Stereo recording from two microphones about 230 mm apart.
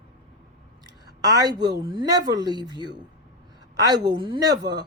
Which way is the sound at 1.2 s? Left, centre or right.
Centre.